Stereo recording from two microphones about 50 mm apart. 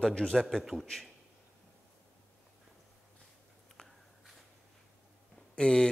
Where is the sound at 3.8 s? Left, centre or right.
Centre.